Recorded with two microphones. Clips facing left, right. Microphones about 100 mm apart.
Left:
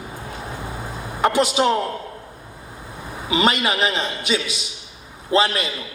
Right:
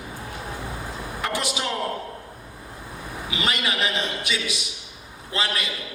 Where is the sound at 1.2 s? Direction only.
25° left (ahead or behind).